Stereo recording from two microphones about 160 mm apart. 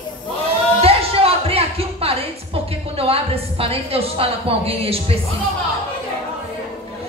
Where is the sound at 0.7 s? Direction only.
35° right (ahead or behind).